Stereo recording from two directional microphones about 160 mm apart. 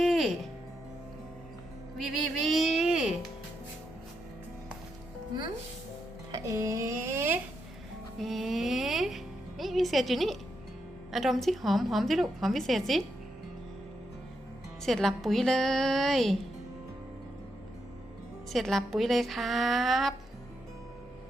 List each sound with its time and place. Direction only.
0.0 s music: centre (ahead or behind)
2.0 s a sound: centre (ahead or behind)
6.3 s a sound: 20° right (ahead or behind)
8.2 s music: centre (ahead or behind)
11.1 s a woman's voice: centre (ahead or behind)
14.8 s a woman's voice: centre (ahead or behind)
18.5 s a woman's voice: centre (ahead or behind)